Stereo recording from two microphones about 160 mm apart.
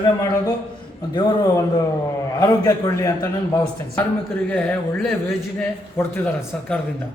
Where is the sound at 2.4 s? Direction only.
20° left (ahead or behind).